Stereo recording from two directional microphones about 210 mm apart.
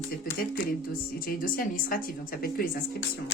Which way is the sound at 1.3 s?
45° left (ahead or behind).